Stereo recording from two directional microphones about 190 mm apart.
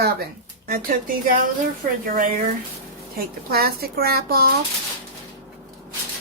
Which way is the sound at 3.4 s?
55° right (ahead or behind).